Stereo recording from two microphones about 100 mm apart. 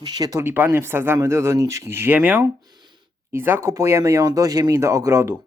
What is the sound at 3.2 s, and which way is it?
Speech, 25° right (ahead or behind).